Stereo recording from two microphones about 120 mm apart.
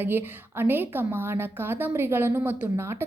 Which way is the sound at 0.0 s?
20° right (ahead or behind).